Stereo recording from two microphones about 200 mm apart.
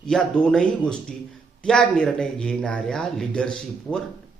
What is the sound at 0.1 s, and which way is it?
Speech, 5° left (ahead or behind).